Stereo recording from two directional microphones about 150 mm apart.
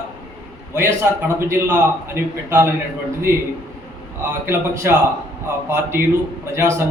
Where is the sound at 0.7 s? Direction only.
15° right (ahead or behind).